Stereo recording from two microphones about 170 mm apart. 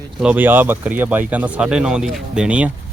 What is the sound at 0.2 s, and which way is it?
Speech, 10° right (ahead or behind).